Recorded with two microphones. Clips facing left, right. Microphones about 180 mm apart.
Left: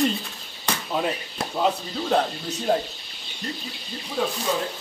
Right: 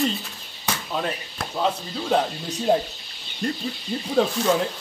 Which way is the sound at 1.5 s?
5° left (ahead or behind).